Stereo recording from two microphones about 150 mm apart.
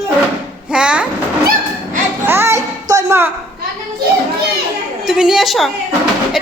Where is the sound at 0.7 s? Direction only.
5° right (ahead or behind).